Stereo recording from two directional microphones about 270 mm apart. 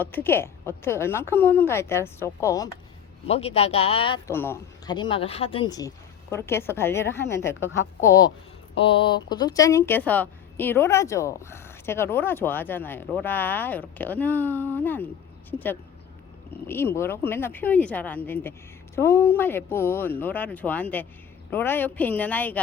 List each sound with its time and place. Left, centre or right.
0.0 s a woman's voice: centre
3.2 s a woman's voice: left; by 22.6 s centre